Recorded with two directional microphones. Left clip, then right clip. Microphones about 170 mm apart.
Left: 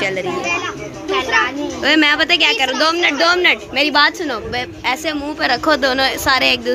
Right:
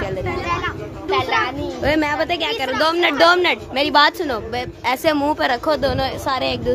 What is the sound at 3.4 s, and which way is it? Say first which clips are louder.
A woman's voice: left 4 dB; 15° right (ahead or behind).